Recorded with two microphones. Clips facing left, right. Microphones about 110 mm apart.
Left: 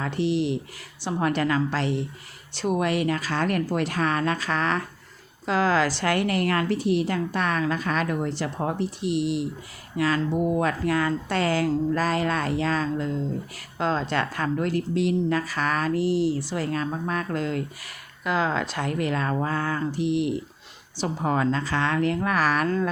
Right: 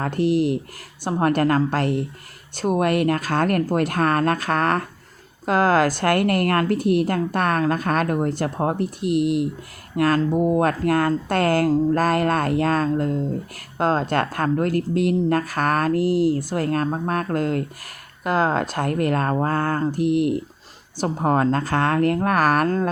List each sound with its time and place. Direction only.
0.0 s a woman's voice: 50° right (ahead or behind)
10.3 s speech: 35° right (ahead or behind)
10.6 s a woman's voice: 50° right (ahead or behind)